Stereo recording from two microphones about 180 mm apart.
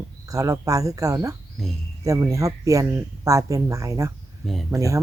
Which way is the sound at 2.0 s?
20° right (ahead or behind).